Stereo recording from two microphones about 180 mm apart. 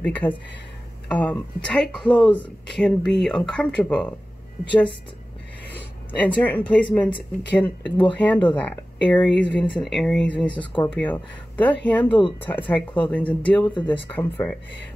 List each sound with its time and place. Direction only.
0.0 s speech: 10° left (ahead or behind)
5.8 s speech: 10° left (ahead or behind)
12.2 s speech: 30° left (ahead or behind)
12.5 s speech: 10° left (ahead or behind)